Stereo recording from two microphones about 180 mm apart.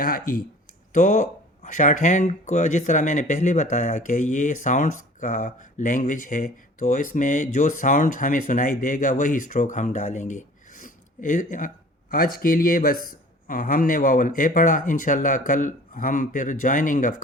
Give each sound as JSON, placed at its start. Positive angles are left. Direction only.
{"t": 0.0, "sound": "speech", "side_deg": 50}